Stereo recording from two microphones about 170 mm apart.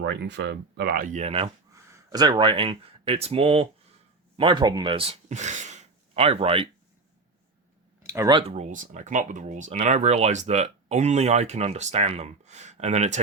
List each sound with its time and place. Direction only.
0.0 s speech: 90° right; by 1.5 s 40° right (ahead or behind)
1.7 s speech: 20° right (ahead or behind)
8.0 s speech: 20° right (ahead or behind)
8.4 s speech: 35° right (ahead or behind)